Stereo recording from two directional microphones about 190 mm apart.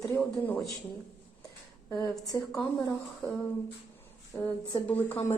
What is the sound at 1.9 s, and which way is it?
Speech, 20° left (ahead or behind).